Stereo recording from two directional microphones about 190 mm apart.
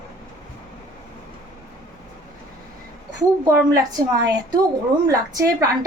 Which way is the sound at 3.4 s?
20° right (ahead or behind).